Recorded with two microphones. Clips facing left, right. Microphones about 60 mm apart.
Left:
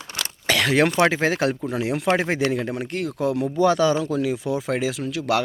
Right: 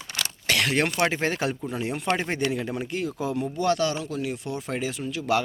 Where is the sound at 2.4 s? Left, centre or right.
Left.